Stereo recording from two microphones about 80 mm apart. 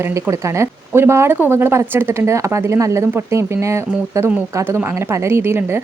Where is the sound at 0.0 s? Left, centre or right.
Right.